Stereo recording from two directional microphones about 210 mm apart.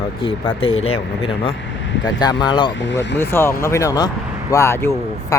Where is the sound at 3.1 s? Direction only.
10° left (ahead or behind).